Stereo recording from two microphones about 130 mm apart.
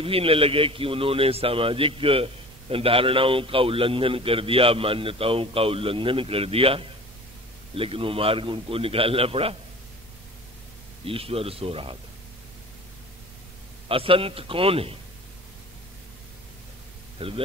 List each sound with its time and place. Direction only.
0.0 s a man's voice: 45° right (ahead or behind)
11.1 s a man's voice: 45° right (ahead or behind)
13.8 s a man's voice: 45° right (ahead or behind)
17.2 s a man's voice: 45° right (ahead or behind)